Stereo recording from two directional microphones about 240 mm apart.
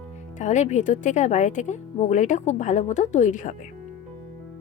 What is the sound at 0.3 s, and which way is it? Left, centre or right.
A woman's voice, left.